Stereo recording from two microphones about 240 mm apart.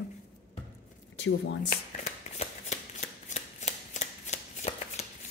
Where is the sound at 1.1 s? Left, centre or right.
Left.